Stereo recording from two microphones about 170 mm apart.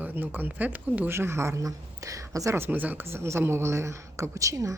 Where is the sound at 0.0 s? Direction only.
10° right (ahead or behind).